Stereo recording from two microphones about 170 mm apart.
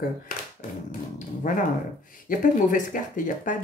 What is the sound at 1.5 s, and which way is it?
Speech, 45° left (ahead or behind).